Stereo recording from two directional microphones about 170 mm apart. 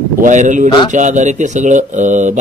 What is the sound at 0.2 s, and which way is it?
Speech, 45° right (ahead or behind).